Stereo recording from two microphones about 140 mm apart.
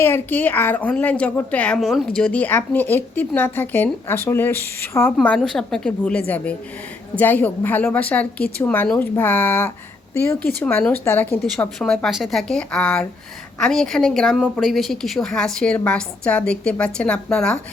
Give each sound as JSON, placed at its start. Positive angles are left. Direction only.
{"t": 0.0, "sound": "a woman's voice", "side_deg": 15}
{"t": 5.2, "sound": "a woman's voice", "side_deg": 5}
{"t": 11.4, "sound": "a woman's voice", "side_deg": 5}